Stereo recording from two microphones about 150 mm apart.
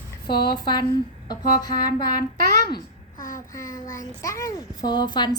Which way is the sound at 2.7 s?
65° left (ahead or behind).